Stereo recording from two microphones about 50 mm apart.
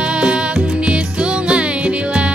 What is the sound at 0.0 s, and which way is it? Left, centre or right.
Music, right.